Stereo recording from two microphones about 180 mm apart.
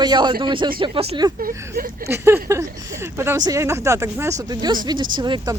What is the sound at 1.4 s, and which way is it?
Speech, 50° right (ahead or behind).